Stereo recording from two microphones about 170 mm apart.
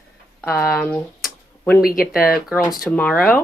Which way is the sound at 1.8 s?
60° left (ahead or behind).